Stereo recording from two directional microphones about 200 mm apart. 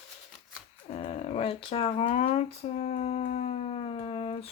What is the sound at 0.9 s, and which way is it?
Speech, 30° left (ahead or behind).